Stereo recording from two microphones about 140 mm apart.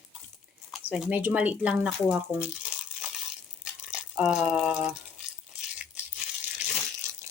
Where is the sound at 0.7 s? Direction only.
5° right (ahead or behind).